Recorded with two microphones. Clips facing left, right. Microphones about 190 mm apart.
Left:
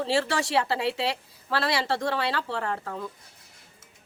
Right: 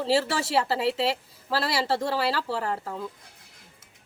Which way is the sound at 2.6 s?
25° right (ahead or behind).